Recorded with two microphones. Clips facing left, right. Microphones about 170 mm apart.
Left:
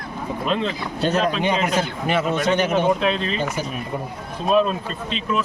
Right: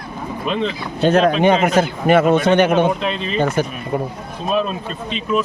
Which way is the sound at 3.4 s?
55° right (ahead or behind).